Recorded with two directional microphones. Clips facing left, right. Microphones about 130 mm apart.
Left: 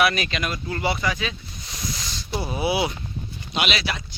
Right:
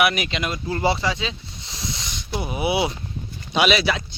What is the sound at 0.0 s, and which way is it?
Speech, 15° right (ahead or behind).